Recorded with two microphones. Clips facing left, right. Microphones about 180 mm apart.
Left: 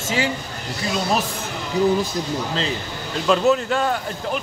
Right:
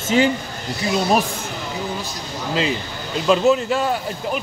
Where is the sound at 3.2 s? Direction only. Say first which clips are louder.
Right 2 dB; centre (ahead or behind).